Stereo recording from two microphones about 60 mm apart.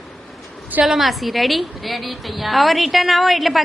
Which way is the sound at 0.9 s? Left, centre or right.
Centre.